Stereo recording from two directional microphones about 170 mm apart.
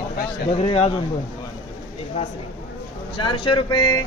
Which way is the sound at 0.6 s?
35° left (ahead or behind).